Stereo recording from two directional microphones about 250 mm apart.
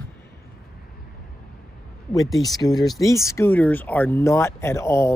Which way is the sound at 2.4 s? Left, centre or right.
Centre.